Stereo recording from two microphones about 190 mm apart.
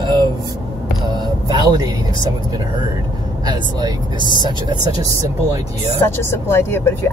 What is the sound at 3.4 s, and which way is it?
Speech, 20° right (ahead or behind).